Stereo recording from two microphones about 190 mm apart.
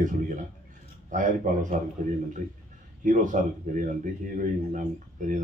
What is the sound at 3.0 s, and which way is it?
Speech, 40° right (ahead or behind).